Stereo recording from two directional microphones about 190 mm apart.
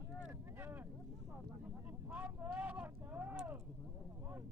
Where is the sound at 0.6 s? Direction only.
10° right (ahead or behind).